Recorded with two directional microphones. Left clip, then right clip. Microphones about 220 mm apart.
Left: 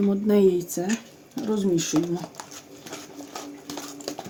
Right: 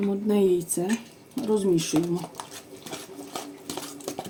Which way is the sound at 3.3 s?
5° right (ahead or behind).